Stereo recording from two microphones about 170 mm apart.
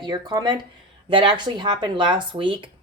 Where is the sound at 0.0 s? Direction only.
25° right (ahead or behind).